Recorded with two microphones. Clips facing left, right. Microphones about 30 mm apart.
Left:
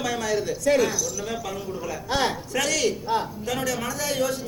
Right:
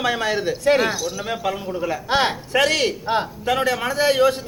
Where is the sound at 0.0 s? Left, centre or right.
Right.